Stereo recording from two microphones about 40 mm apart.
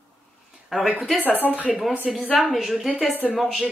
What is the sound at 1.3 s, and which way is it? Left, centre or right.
Speech, left.